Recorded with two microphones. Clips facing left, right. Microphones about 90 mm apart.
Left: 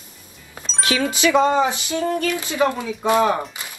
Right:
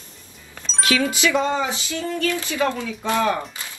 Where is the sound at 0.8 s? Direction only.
25° left (ahead or behind).